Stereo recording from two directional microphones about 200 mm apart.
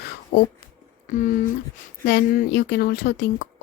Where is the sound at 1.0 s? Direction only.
40° left (ahead or behind).